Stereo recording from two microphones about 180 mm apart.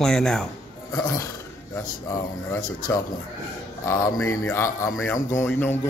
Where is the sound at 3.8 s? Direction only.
15° left (ahead or behind).